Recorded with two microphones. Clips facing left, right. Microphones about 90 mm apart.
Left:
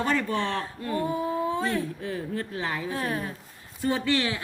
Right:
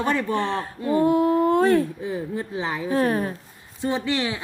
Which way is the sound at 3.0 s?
40° right (ahead or behind).